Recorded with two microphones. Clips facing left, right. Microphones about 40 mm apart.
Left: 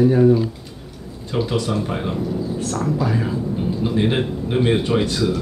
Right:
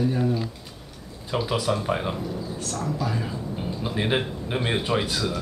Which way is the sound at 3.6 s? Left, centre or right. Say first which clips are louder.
Left 7 dB; centre.